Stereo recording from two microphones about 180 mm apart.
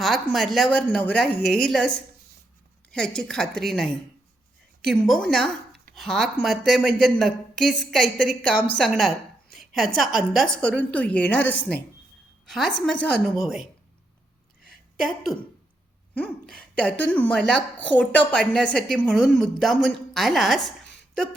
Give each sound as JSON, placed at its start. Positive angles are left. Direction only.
{"t": 0.0, "sound": "a woman's voice", "side_deg": 0}
{"t": 5.0, "sound": "a woman's voice", "side_deg": 0}
{"t": 14.7, "sound": "a sound", "side_deg": 0}
{"t": 16.1, "sound": "a woman's voice", "side_deg": 5}